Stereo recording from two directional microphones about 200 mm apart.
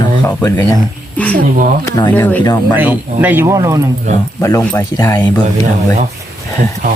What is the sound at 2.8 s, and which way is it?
Speech, 10° right (ahead or behind).